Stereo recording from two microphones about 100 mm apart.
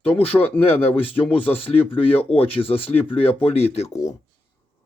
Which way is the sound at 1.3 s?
70° left (ahead or behind).